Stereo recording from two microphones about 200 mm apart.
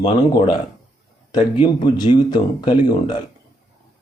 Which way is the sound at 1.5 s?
20° left (ahead or behind).